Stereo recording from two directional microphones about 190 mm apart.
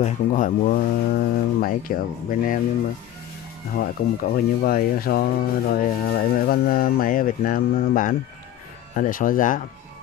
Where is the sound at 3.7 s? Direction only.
50° left (ahead or behind).